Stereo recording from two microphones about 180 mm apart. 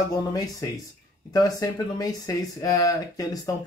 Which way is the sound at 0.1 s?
20° left (ahead or behind).